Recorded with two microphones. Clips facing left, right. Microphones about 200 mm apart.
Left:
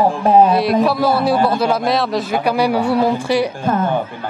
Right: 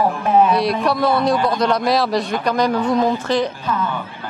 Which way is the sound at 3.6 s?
50° left (ahead or behind).